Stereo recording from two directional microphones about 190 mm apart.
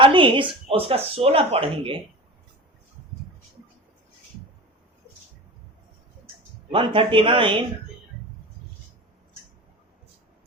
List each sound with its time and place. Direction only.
0.0 s speech: 25° right (ahead or behind)
6.7 s speech: 25° right (ahead or behind)